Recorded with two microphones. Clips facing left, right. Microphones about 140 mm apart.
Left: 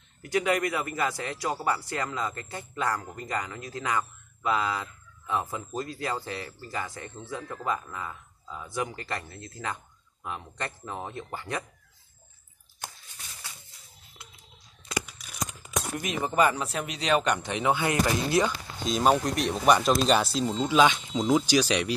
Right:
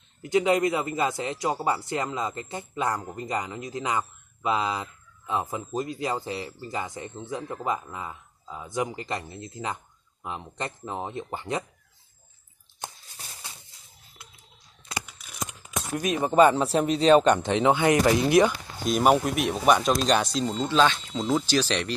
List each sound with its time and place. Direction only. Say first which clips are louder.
0.2 s a man's voice: right 4 dB; 20° right (ahead or behind)
16.2 s a man's voice: right 6 dB; 25° right (ahead or behind)
18.9 s speech: right 2 dB; 5° right (ahead or behind); by 21.9 s 10° left (ahead or behind)